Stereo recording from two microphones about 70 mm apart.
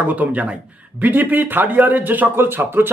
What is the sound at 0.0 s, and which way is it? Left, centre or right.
Speech, right.